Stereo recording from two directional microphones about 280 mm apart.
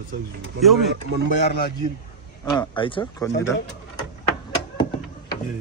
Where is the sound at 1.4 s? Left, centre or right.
Left.